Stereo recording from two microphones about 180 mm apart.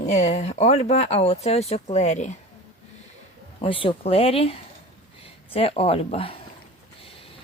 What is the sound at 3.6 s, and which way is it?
Speech, 30° left (ahead or behind).